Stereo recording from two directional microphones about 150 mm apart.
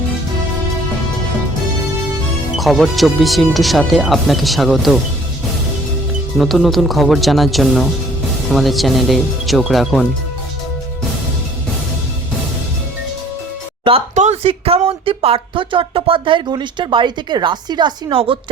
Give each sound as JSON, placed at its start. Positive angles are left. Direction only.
{"t": 2.6, "sound": "speech", "side_deg": 0}
{"t": 6.4, "sound": "speech", "side_deg": 0}
{"t": 13.9, "sound": "speech", "side_deg": -35}